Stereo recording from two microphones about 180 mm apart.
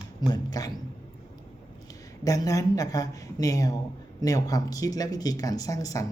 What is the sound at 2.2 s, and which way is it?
Speech, 20° left (ahead or behind).